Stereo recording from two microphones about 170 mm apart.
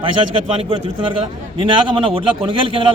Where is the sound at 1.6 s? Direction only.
30° right (ahead or behind).